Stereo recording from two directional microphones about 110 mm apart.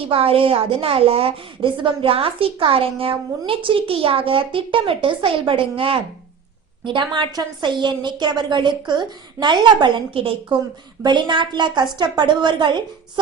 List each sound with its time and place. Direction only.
0.1 s a woman's voice: 60° right (ahead or behind)